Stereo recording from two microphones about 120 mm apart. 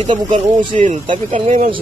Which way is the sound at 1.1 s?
90° right.